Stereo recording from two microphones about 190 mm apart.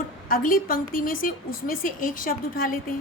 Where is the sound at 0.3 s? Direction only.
45° left (ahead or behind).